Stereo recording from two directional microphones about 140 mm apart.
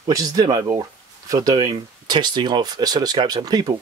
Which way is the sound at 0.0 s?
25° right (ahead or behind).